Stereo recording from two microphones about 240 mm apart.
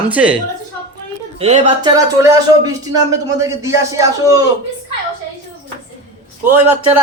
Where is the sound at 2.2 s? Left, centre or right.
Centre.